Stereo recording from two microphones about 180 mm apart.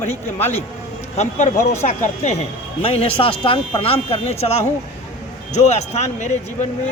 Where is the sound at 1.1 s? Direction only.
40° left (ahead or behind).